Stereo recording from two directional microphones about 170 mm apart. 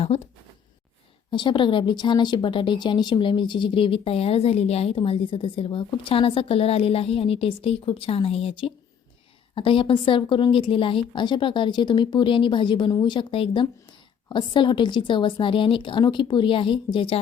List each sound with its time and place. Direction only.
0.1 s speech: 35° left (ahead or behind)
1.3 s a woman's voice: 30° left (ahead or behind)